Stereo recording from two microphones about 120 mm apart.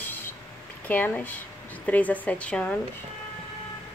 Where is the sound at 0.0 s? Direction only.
15° left (ahead or behind).